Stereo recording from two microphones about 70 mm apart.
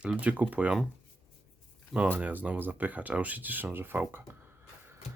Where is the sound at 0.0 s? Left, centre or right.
Centre.